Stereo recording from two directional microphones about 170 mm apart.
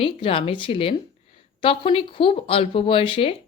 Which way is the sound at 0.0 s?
30° left (ahead or behind).